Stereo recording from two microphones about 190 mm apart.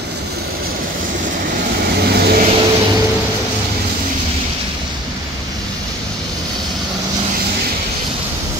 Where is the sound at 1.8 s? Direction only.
60° right (ahead or behind).